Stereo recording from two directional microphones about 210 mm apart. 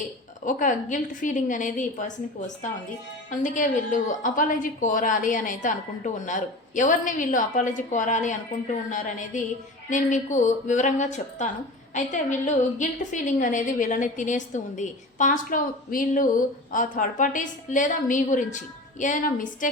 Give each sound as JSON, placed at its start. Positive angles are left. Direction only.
{"t": 0.4, "sound": "a woman's voice", "side_deg": 40}
{"t": 3.2, "sound": "a woman's voice", "side_deg": 35}
{"t": 9.9, "sound": "a woman's voice", "side_deg": 35}